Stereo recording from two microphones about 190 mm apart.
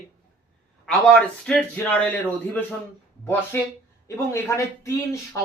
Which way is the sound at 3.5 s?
10° left (ahead or behind).